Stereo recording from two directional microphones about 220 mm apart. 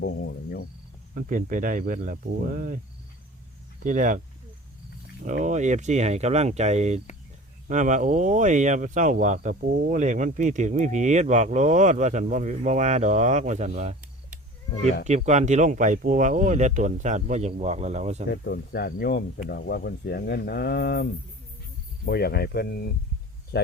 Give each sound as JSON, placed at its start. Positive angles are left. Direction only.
{"t": 0.0, "sound": "speech", "side_deg": 50}
{"t": 1.1, "sound": "speech", "side_deg": -35}
{"t": 3.8, "sound": "speech", "side_deg": -35}
{"t": 5.2, "sound": "speech", "side_deg": -35}
{"t": 15.0, "sound": "speech", "side_deg": -30}
{"t": 18.3, "sound": "speech", "side_deg": 45}